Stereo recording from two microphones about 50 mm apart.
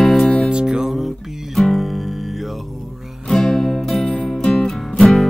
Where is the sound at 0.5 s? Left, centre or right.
Centre.